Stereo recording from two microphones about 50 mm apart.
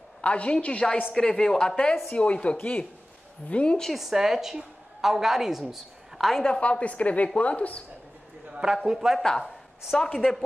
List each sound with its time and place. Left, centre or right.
0.2 s a woman's voice: left
1.1 s a woman's voice: centre; by 2.8 s left
3.4 s a woman's voice: left
3.9 s a woman's voice: centre
6.4 s a woman's voice: left
8.5 s a man's voice: centre
9.9 s speech: centre